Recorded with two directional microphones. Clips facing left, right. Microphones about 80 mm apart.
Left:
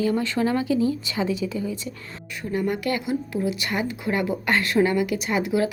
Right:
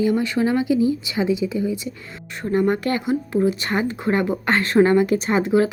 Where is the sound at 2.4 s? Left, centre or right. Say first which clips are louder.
Right 5 dB; right.